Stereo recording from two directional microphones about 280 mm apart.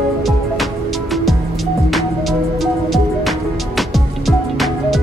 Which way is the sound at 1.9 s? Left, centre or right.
Centre.